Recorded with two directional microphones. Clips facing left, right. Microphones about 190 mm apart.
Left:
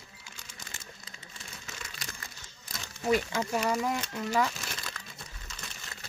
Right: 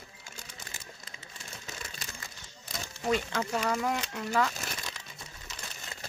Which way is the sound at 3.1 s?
10° left (ahead or behind).